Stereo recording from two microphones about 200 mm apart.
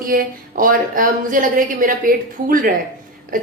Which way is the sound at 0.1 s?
45° right (ahead or behind).